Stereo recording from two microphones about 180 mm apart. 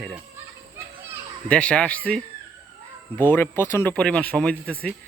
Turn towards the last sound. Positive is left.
turn(degrees=5)  # may be behind; listen again after turning